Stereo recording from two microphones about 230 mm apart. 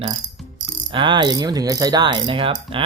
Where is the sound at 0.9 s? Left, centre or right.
Centre.